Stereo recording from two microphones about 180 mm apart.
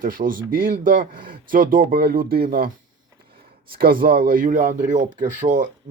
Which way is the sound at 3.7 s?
55° right (ahead or behind).